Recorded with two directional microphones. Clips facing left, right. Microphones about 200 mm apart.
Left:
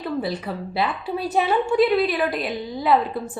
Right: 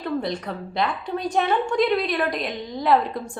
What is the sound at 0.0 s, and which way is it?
A woman's voice, 5° left (ahead or behind).